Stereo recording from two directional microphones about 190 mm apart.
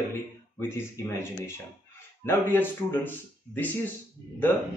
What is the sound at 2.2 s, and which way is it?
Speech, 10° left (ahead or behind).